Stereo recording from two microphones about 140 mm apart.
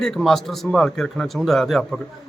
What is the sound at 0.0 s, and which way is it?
A man's voice, centre (ahead or behind).